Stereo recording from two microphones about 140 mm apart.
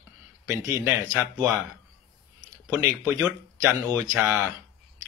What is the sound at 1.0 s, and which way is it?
Speech, 25° right (ahead or behind).